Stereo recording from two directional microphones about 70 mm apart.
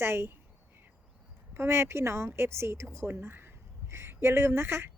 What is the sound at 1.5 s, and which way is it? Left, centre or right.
A woman's voice, right.